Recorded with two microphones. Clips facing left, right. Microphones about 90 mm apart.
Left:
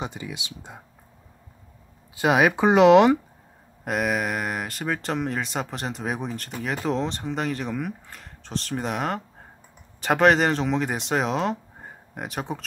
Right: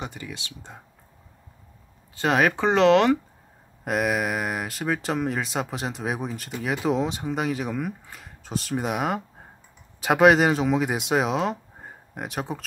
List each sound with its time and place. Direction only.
0.0 s speech: 20° left (ahead or behind)
2.1 s speech: 10° left (ahead or behind)
3.8 s speech: centre (ahead or behind)